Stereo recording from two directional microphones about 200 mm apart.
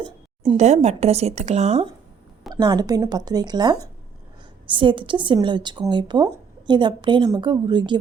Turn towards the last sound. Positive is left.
turn(degrees=-20)  # may be behind; listen again after turning